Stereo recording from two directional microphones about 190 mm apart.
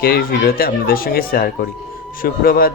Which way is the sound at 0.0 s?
50° left (ahead or behind).